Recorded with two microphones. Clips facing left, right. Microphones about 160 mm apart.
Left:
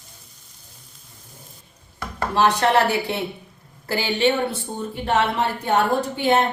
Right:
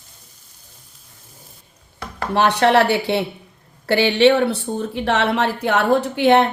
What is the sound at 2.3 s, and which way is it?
Speech, 65° right (ahead or behind).